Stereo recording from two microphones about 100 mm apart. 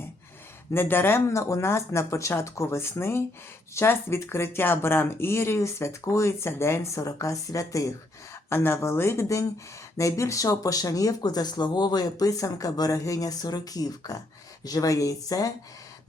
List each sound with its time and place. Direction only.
0.7 s speech: 20° left (ahead or behind)
8.4 s speech: 25° left (ahead or behind)